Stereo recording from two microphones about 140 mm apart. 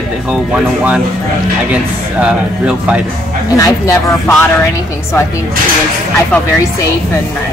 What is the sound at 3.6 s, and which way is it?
Speech, 25° left (ahead or behind).